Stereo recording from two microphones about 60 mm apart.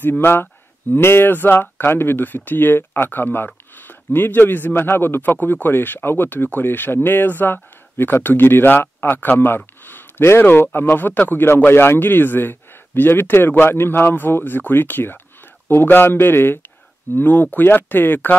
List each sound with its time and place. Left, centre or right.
0.2 s speech: left
9.8 s a sound: left
10.4 s speech: left